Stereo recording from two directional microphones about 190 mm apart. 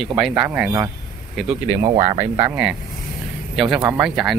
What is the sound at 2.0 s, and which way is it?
Speech, 35° right (ahead or behind).